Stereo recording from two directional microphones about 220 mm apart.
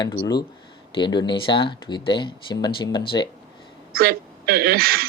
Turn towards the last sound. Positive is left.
turn(degrees=-45)  # may be behind; listen again after turning